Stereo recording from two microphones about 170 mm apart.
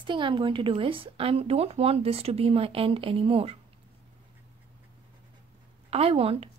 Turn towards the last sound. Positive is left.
turn(degrees=-35)  # may be behind; listen again after turning